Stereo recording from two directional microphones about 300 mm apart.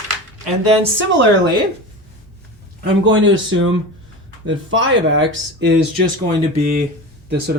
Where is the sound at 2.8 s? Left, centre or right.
Right.